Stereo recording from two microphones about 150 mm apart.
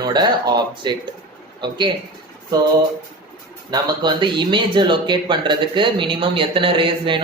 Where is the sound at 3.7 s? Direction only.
30° right (ahead or behind).